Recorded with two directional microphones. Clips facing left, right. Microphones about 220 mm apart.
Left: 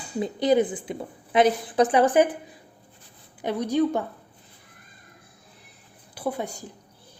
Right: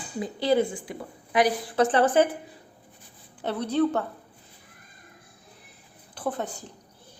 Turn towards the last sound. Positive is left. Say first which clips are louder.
# left 1 dB
turn(degrees=10)  # may be behind; listen again after turning